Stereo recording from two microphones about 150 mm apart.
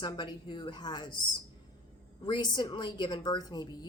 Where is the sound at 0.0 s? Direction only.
30° left (ahead or behind).